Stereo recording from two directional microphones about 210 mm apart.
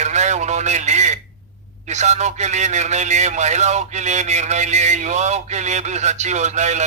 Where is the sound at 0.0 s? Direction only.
35° right (ahead or behind).